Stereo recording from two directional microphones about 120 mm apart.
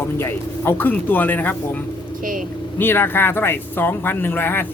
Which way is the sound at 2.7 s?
15° left (ahead or behind).